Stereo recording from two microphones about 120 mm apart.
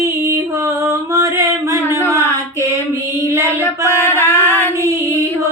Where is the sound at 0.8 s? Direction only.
25° right (ahead or behind).